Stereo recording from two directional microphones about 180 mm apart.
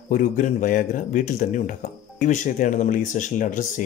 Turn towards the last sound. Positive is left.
turn(degrees=45)  # may be behind; listen again after turning